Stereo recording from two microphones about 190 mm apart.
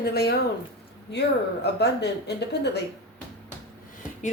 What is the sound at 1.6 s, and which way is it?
A woman's voice, 60° left (ahead or behind).